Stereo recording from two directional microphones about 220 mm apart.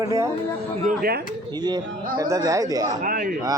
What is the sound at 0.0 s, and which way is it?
Speech, 15° right (ahead or behind).